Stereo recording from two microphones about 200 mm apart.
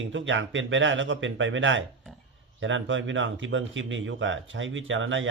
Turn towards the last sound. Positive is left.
turn(degrees=-70)  # may be behind; listen again after turning